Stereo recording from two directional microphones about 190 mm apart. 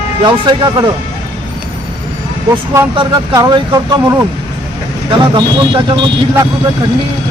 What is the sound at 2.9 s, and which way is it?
Speech, 20° right (ahead or behind).